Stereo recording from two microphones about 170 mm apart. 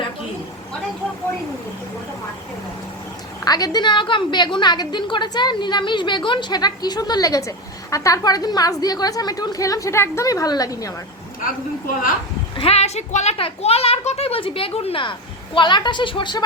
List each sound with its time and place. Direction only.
3.4 s a woman's voice: 20° left (ahead or behind)
12.5 s a child's voice: 35° left (ahead or behind)